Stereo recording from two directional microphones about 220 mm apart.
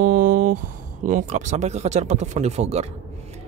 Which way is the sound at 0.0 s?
40° right (ahead or behind).